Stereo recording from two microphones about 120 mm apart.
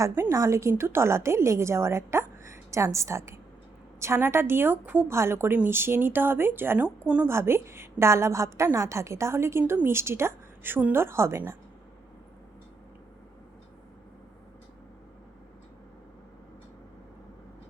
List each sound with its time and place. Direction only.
0.0 s a woman's voice: 25° right (ahead or behind)